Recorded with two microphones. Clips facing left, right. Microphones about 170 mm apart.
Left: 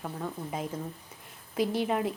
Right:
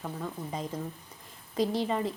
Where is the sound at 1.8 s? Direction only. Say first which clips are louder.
Left 1 dB; 5° left (ahead or behind).